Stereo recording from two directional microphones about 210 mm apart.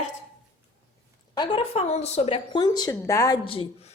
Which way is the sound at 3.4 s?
25° left (ahead or behind).